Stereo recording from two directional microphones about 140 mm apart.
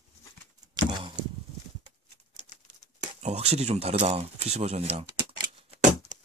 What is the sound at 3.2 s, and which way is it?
Speech, 50° right (ahead or behind).